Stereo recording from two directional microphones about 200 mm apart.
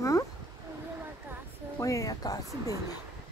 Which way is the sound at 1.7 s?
15° left (ahead or behind).